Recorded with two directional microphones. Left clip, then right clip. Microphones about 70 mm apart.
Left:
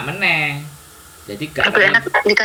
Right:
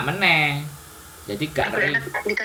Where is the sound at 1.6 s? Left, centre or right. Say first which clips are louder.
Left 10 dB; left.